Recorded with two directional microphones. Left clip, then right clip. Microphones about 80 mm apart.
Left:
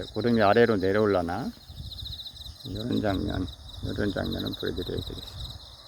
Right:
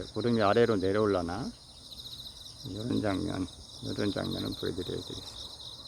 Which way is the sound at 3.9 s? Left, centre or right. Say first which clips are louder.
Left 3 dB; centre.